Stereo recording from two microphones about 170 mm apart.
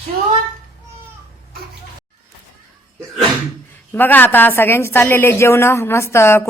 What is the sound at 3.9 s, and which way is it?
Speech, 10° left (ahead or behind).